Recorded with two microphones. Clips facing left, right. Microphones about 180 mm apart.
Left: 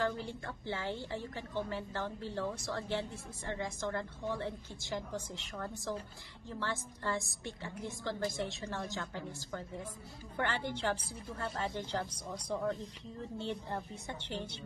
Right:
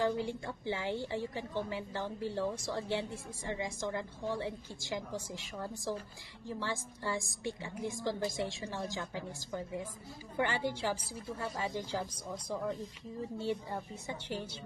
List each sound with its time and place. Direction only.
0.0 s a woman's voice: 15° right (ahead or behind)